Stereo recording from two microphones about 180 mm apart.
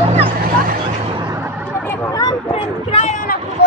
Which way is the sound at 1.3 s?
15° right (ahead or behind).